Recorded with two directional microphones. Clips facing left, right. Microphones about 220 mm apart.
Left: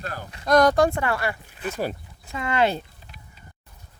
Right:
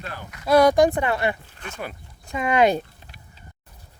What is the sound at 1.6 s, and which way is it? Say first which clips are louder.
Speech: left 8 dB; 5° left (ahead or behind).